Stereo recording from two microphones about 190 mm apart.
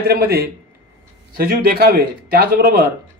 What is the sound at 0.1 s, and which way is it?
A man's voice, 55° right (ahead or behind).